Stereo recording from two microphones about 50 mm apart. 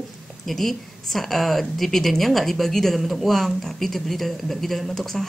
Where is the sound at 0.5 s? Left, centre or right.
Centre.